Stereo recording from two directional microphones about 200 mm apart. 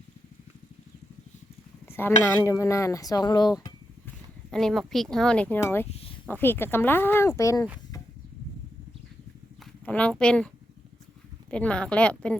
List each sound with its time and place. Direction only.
1.9 s speech: 10° left (ahead or behind)
4.5 s speech: centre (ahead or behind)
9.8 s speech: 5° left (ahead or behind)
11.5 s speech: 5° left (ahead or behind)